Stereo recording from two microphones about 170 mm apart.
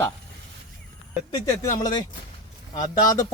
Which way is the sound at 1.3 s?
20° left (ahead or behind).